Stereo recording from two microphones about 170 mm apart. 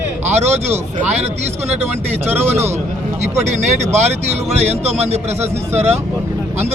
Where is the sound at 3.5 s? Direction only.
40° right (ahead or behind).